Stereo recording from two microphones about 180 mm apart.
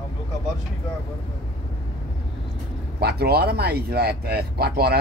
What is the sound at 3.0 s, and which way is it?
Speech, 65° right (ahead or behind).